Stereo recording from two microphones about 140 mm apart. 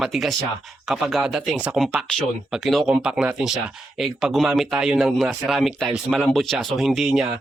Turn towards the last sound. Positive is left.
turn(degrees=0)  # may be behind; listen again after turning